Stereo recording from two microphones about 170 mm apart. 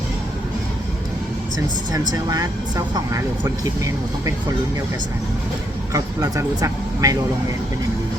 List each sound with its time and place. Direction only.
1.9 s speech: 20° right (ahead or behind)
5.9 s speech: 20° right (ahead or behind)